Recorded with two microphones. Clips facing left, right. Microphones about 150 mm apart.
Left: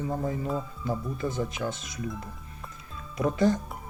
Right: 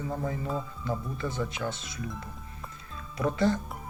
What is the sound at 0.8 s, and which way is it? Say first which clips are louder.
Speech: left 2 dB; 45° left (ahead or behind).